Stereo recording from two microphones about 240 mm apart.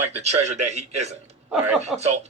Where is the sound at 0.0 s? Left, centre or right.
Right.